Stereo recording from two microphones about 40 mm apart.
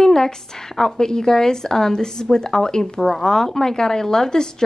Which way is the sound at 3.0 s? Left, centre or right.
Centre.